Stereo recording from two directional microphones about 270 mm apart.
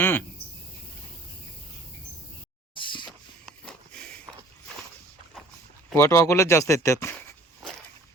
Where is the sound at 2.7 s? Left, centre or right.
Centre.